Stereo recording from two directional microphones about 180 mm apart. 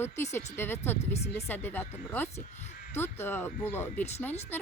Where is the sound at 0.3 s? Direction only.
10° left (ahead or behind).